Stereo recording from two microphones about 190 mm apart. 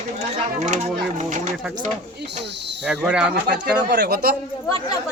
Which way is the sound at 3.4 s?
65° right (ahead or behind).